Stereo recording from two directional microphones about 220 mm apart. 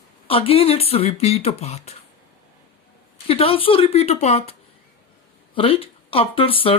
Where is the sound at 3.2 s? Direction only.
25° left (ahead or behind).